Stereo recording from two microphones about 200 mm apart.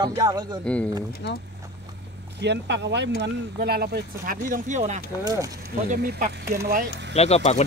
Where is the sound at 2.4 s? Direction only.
60° right (ahead or behind); by 5.0 s 40° right (ahead or behind).